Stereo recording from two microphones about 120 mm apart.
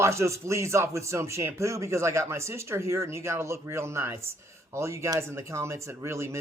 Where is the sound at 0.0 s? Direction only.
25° right (ahead or behind).